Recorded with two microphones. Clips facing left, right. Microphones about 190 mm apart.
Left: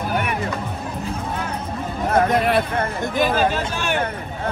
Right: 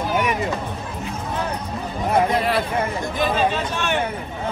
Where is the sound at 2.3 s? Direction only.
55° left (ahead or behind).